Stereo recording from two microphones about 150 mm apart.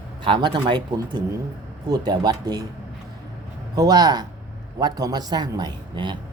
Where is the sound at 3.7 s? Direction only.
25° right (ahead or behind).